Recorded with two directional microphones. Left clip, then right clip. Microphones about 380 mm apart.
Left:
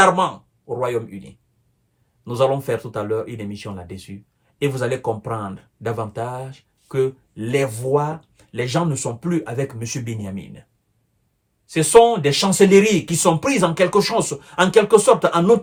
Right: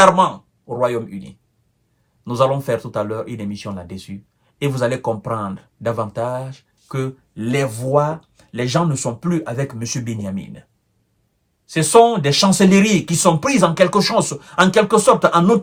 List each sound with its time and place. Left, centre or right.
0.0 s speech: centre
11.7 s speech: centre